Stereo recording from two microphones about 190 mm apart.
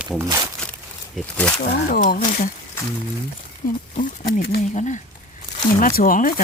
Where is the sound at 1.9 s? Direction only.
45° left (ahead or behind).